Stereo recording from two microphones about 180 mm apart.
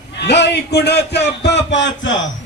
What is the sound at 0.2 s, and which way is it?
A man's voice, 70° left (ahead or behind).